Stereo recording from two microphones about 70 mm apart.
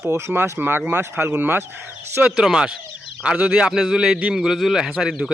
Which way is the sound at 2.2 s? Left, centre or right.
Centre.